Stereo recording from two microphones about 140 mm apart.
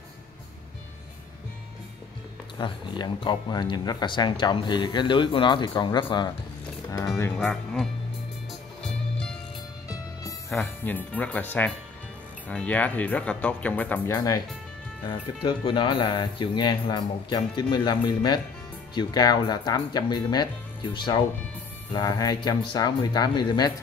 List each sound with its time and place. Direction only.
2.6 s speech: 35° left (ahead or behind)
6.9 s speech: 20° left (ahead or behind)
7.3 s speech: 5° left (ahead or behind)
10.5 s speech: 10° left (ahead or behind)
15.0 s speech: 35° left (ahead or behind)